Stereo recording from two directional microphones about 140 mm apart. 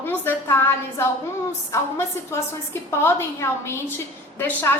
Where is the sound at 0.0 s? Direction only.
15° left (ahead or behind).